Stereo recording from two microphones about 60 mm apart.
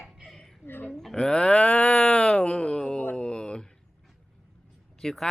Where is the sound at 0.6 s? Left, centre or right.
Left.